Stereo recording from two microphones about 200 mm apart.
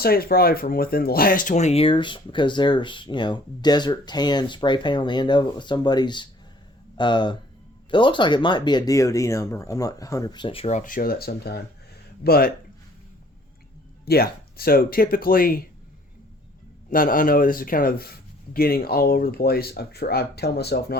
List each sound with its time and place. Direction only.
0.0 s speech: 50° left (ahead or behind)
14.0 s speech: 50° left (ahead or behind)
16.9 s speech: 45° left (ahead or behind)